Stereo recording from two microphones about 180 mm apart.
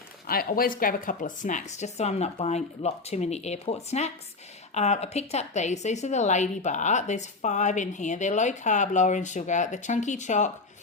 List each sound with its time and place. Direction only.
0.3 s a woman's voice: 55° left (ahead or behind)